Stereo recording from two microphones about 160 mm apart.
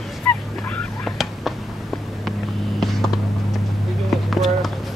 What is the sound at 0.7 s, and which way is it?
Whispering, centre (ahead or behind).